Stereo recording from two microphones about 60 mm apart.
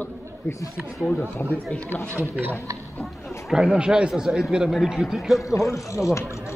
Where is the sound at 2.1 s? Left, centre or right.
Right.